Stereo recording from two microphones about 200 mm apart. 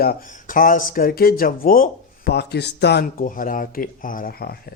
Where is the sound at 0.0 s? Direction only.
45° left (ahead or behind).